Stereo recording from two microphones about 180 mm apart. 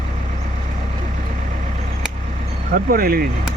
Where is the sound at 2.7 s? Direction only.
55° right (ahead or behind).